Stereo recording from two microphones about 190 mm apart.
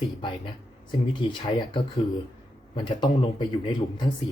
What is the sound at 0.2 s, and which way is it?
Speech, 25° left (ahead or behind).